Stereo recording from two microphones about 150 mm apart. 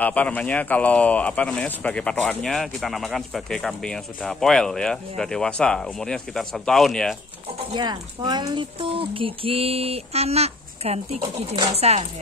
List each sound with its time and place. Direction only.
0.0 s speech: 10° left (ahead or behind)
7.7 s speech: 30° right (ahead or behind); by 12.1 s 45° right (ahead or behind)